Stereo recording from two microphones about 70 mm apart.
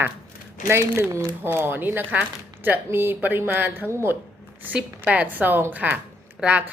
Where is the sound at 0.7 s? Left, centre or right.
Right.